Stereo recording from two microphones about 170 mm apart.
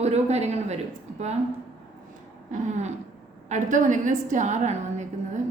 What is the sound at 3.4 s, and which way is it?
A woman's voice, 45° right (ahead or behind).